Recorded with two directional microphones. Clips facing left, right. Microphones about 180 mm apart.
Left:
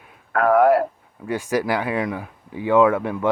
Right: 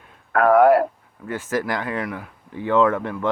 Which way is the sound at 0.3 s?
60° right (ahead or behind).